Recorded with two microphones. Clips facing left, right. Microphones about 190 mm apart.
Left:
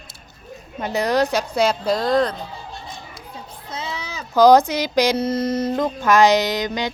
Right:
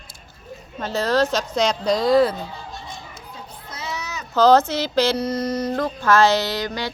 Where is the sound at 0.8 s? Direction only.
15° left (ahead or behind); by 2.3 s 5° right (ahead or behind).